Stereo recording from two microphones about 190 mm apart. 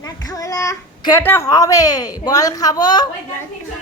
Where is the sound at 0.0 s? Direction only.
20° left (ahead or behind).